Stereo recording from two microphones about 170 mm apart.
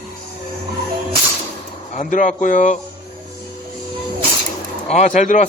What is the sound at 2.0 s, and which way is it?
Speech, 50° left (ahead or behind).